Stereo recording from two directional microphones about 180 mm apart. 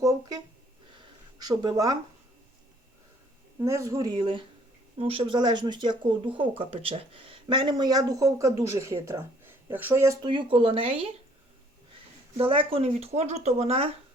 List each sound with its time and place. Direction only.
0.0 s a sound: 20° right (ahead or behind)
3.6 s speech: 15° right (ahead or behind)
10.2 s speech: 30° right (ahead or behind)
12.4 s speech: 30° right (ahead or behind)